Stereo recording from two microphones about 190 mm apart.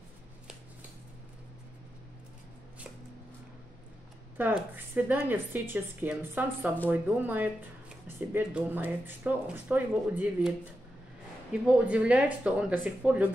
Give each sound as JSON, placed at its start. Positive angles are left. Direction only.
{"t": 4.4, "sound": "speech", "side_deg": -10}
{"t": 11.6, "sound": "speech", "side_deg": -5}